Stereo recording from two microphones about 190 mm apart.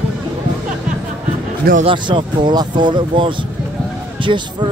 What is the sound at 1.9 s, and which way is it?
Speech, 25° right (ahead or behind).